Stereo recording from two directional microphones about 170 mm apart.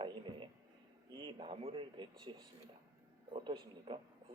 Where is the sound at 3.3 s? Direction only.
30° right (ahead or behind).